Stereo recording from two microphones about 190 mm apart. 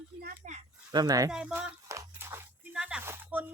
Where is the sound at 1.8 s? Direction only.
15° right (ahead or behind).